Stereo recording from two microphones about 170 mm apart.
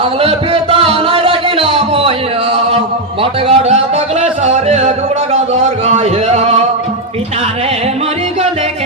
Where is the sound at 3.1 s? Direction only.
35° right (ahead or behind).